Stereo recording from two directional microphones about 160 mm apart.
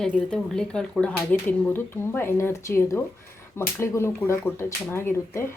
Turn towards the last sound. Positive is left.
turn(degrees=15)  # may be behind; listen again after turning